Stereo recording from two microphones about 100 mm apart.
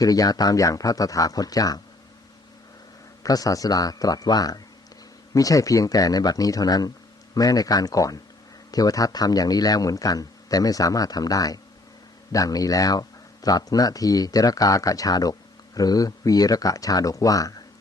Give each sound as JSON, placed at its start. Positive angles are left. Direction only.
{"t": 0.0, "sound": "speech", "side_deg": 40}
{"t": 3.2, "sound": "speech", "side_deg": 35}